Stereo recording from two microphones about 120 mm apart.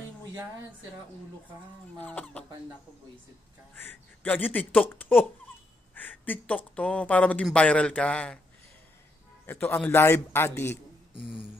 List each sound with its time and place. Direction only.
2.0 s speech: 10° left (ahead or behind)
3.7 s speech: 15° left (ahead or behind)
9.5 s a man's voice: 20° left (ahead or behind)